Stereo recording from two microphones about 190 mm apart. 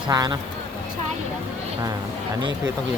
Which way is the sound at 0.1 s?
20° right (ahead or behind).